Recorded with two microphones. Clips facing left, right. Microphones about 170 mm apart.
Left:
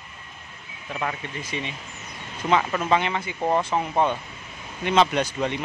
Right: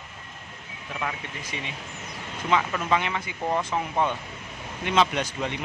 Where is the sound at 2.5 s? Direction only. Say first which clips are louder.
Left 3 dB; 35° left (ahead or behind).